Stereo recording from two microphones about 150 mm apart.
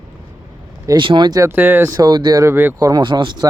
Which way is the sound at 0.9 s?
30° right (ahead or behind).